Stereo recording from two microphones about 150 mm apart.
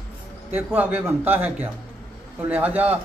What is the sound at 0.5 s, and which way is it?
A man's voice, 15° right (ahead or behind).